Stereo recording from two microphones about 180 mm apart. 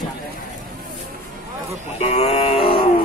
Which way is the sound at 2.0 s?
35° left (ahead or behind).